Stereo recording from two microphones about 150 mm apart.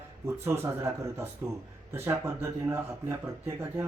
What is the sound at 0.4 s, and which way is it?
Speech, 15° right (ahead or behind).